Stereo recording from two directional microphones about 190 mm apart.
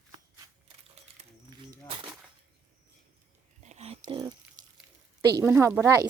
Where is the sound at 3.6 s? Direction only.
35° right (ahead or behind).